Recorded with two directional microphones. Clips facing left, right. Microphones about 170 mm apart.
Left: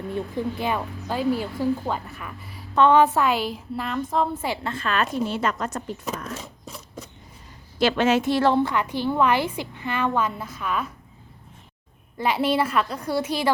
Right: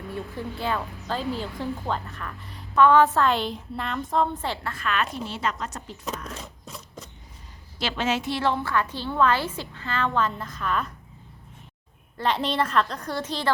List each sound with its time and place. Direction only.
0.1 s a woman's voice: 15° left (ahead or behind)
2.7 s a woman's voice: 20° left (ahead or behind); by 4.4 s centre (ahead or behind)
4.4 s a woman's voice: 10° left (ahead or behind)
4.7 s speech: 30° left (ahead or behind); by 6.0 s 50° left (ahead or behind)
6.3 s a sound: 5° left (ahead or behind)
7.8 s speech: 55° left (ahead or behind)
8.6 s a woman's voice: 15° left (ahead or behind)
12.1 s a woman's voice: 10° left (ahead or behind)